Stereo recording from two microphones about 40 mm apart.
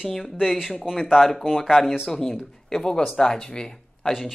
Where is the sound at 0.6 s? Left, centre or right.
Centre.